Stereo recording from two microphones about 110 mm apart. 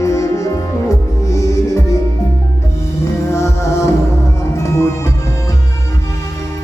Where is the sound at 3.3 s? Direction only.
25° left (ahead or behind).